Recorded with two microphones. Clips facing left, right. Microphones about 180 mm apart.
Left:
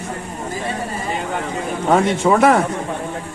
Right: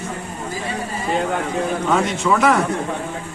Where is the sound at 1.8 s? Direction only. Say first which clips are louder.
Left 6 dB; 50° left (ahead or behind).